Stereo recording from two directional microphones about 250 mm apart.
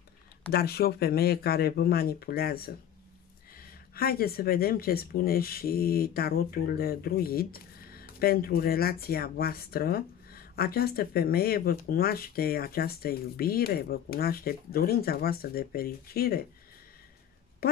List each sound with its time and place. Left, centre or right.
0.5 s speech: left